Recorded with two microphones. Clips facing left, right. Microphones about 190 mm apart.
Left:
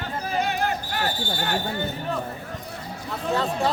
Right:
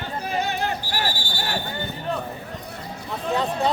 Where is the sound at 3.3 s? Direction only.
15° right (ahead or behind).